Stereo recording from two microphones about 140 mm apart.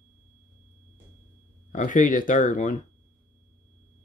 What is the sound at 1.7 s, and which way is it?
Speech, 65° left (ahead or behind).